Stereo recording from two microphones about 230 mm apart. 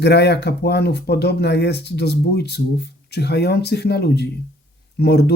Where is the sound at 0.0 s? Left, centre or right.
Left.